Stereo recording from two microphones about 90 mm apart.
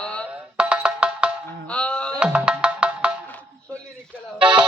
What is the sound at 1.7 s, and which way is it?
Music, 10° left (ahead or behind).